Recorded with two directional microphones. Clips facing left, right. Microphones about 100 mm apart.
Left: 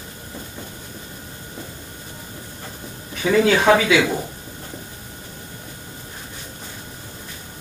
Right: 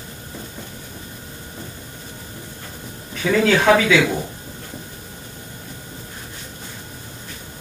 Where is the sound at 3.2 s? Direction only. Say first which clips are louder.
Even; 15° left (ahead or behind).